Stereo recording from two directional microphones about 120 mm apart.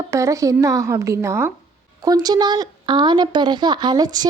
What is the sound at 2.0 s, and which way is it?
Speech, 35° right (ahead or behind).